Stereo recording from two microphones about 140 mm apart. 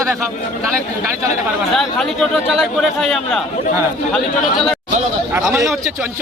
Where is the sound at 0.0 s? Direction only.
20° right (ahead or behind).